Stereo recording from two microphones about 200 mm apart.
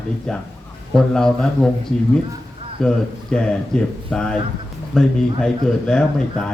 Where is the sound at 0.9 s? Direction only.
5° left (ahead or behind).